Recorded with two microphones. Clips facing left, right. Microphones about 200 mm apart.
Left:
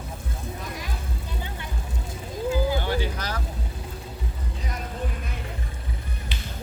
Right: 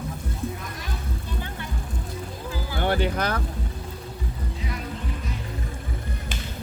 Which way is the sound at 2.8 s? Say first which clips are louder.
Right 4 dB; 60° right (ahead or behind).